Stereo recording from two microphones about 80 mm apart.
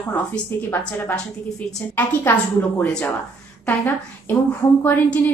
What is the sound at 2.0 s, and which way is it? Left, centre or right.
A woman's voice, left.